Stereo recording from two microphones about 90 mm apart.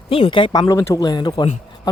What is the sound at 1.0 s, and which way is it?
Speech, 50° left (ahead or behind).